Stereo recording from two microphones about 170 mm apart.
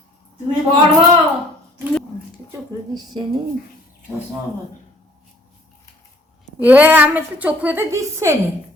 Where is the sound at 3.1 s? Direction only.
30° right (ahead or behind).